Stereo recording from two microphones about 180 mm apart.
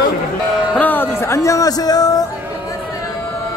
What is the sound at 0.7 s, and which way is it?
Speech, 10° left (ahead or behind).